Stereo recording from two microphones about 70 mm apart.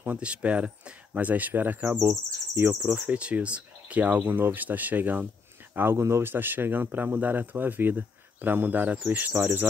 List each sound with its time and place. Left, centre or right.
0.0 s speech: right
2.8 s speech: centre
5.8 s speech: right